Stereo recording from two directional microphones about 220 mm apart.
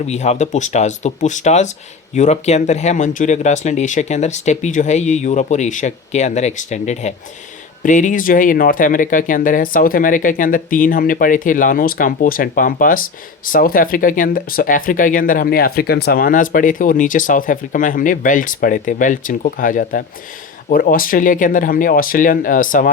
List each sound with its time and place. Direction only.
0.0 s speech: 30° left (ahead or behind)